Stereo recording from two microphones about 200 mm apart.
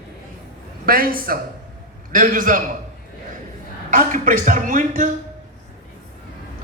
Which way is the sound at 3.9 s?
40° right (ahead or behind).